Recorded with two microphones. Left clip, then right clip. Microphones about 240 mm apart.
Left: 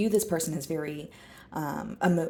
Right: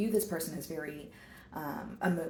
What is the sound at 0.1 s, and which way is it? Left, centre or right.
Speech, left.